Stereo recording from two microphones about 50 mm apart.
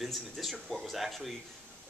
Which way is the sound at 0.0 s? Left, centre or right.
Centre.